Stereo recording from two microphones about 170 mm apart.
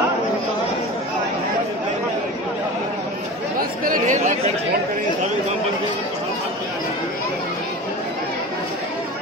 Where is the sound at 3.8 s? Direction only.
50° right (ahead or behind).